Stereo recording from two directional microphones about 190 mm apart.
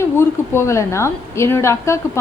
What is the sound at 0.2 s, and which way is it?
A woman's voice, 15° left (ahead or behind).